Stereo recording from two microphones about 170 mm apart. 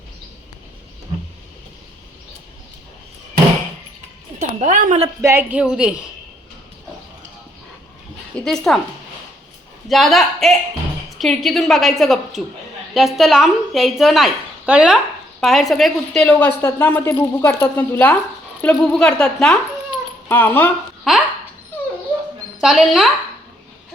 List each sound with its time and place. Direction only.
4.4 s speech: 45° right (ahead or behind)
5.2 s a woman's voice: 10° right (ahead or behind)
8.4 s a woman's voice: centre (ahead or behind)
9.9 s a woman's voice: centre (ahead or behind)
21.1 s a woman's voice: centre (ahead or behind)
22.6 s a woman's voice: centre (ahead or behind)